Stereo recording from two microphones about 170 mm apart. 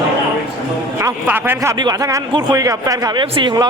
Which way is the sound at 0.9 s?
15° right (ahead or behind).